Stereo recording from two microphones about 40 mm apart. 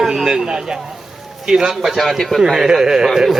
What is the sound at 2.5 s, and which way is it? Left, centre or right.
Speech, centre.